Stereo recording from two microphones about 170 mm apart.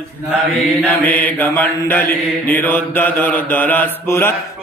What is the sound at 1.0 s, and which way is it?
Mantra, 10° left (ahead or behind).